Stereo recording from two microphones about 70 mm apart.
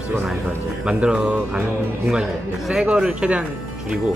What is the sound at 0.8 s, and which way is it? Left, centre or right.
Speech, centre.